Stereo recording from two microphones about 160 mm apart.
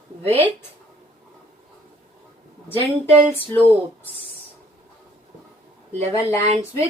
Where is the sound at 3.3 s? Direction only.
10° left (ahead or behind).